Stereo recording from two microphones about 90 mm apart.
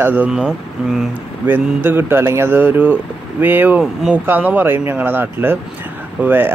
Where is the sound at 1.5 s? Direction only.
25° right (ahead or behind).